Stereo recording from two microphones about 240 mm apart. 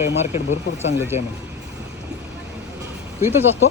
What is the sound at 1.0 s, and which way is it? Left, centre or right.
Speech, centre.